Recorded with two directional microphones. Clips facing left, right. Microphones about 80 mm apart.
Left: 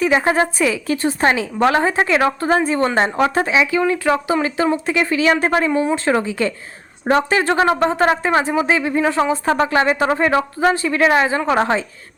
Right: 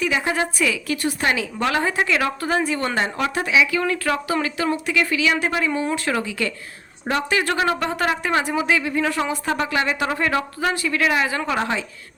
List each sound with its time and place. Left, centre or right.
0.0 s a woman's voice: left
3.8 s a woman's voice: centre